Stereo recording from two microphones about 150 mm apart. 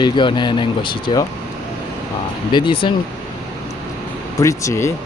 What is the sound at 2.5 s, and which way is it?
Speech, 35° left (ahead or behind).